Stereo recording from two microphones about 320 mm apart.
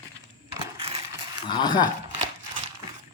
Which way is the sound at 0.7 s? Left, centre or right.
Centre.